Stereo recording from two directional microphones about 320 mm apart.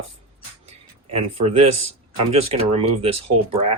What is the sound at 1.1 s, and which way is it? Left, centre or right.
Speech, centre.